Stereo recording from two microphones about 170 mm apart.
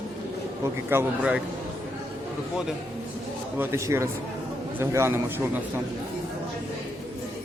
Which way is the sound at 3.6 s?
15° right (ahead or behind).